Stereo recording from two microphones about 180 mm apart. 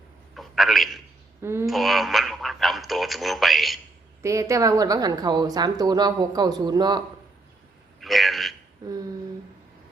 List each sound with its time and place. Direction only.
0.3 s a man's voice: centre (ahead or behind)
1.4 s speech: 15° right (ahead or behind)
1.6 s speech: centre (ahead or behind)
4.2 s a woman's voice: 15° right (ahead or behind)
8.0 s a sound: centre (ahead or behind)